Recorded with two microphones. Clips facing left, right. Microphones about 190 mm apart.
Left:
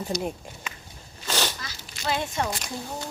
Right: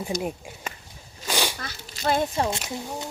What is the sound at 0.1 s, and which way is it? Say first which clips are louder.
Speech: right 1 dB; 50° right (ahead or behind).